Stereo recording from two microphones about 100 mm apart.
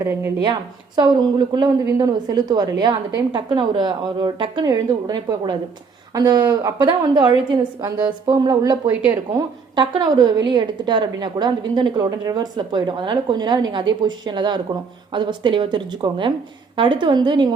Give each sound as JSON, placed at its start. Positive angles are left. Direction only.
{"t": 0.0, "sound": "a woman's voice", "side_deg": -25}
{"t": 0.9, "sound": "a woman's voice", "side_deg": -45}
{"t": 7.8, "sound": "a woman's voice", "side_deg": -35}